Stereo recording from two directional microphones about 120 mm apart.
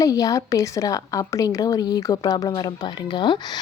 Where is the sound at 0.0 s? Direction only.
30° left (ahead or behind).